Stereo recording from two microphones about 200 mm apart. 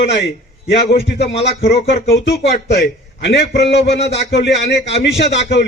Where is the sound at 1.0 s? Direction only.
60° left (ahead or behind).